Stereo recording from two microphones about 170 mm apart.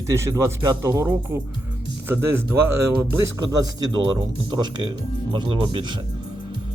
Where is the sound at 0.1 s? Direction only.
15° right (ahead or behind).